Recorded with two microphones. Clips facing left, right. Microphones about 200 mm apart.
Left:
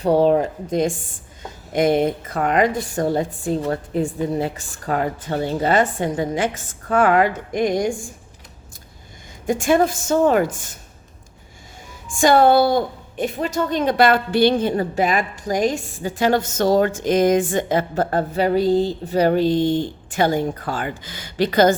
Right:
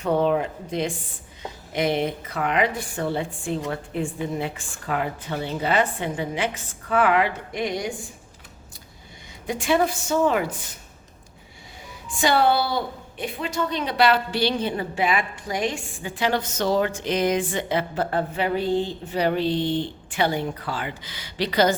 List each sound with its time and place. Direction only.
0.0 s a woman's voice: 35° left (ahead or behind)
9.5 s a woman's voice: 45° left (ahead or behind)
12.0 s a woman's voice: 45° left (ahead or behind)